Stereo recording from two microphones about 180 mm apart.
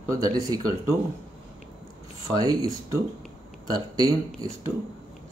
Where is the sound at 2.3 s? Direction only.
20° right (ahead or behind).